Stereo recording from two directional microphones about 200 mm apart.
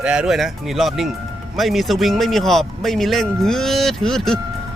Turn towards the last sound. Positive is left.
turn(degrees=0)  # may be behind; listen again after turning